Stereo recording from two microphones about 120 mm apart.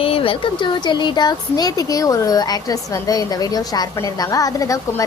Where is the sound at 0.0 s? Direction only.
50° left (ahead or behind).